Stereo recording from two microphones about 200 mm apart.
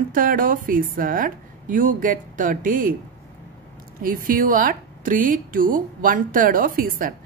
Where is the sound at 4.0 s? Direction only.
45° right (ahead or behind).